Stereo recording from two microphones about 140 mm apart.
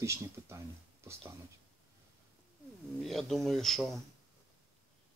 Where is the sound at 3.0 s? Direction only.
Centre (ahead or behind).